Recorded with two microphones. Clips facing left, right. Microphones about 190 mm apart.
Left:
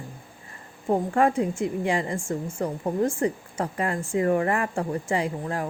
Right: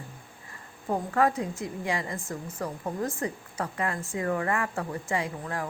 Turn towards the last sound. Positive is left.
turn(degrees=25)  # may be behind; listen again after turning